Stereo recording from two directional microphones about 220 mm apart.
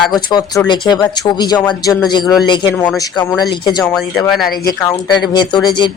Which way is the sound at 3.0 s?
15° left (ahead or behind).